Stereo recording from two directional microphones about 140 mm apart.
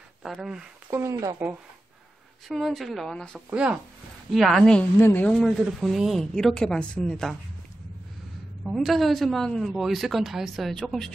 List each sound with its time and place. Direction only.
0.2 s speech: 5° right (ahead or behind)
0.9 s speech: 25° right (ahead or behind)
2.4 s a woman's voice: centre (ahead or behind)
3.3 s a woman's voice: 5° right (ahead or behind)
8.6 s a woman's voice: centre (ahead or behind)